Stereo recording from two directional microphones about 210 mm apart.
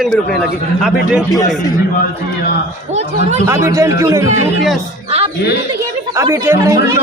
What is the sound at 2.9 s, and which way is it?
Speech, 30° right (ahead or behind).